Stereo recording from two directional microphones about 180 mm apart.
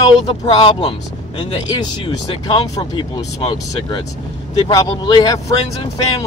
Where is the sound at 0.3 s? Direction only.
30° left (ahead or behind).